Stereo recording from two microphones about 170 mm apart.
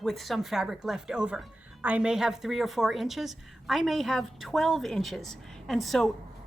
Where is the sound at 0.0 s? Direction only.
Centre (ahead or behind).